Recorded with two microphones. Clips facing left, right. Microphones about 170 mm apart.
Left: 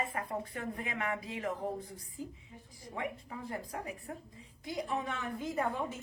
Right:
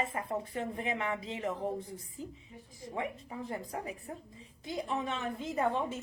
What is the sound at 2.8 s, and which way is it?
Speech, 20° right (ahead or behind).